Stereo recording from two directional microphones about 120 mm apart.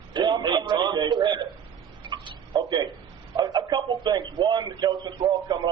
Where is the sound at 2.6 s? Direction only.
35° right (ahead or behind).